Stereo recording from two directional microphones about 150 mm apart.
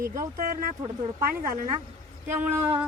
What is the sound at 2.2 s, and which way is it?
Speech, 15° right (ahead or behind).